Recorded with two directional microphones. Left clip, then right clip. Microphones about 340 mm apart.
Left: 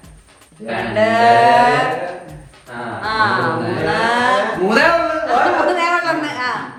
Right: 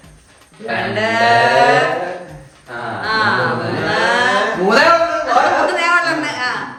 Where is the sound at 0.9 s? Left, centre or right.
Centre.